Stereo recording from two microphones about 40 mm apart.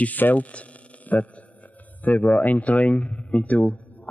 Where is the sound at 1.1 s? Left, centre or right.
Left.